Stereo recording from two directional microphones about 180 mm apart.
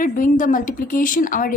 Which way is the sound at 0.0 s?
45° left (ahead or behind).